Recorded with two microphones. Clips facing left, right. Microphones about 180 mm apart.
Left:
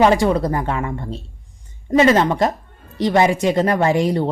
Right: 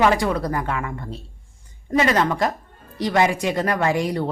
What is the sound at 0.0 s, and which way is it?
Speech, 25° left (ahead or behind).